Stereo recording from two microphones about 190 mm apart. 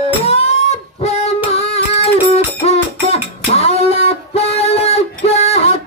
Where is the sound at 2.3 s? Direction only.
35° left (ahead or behind).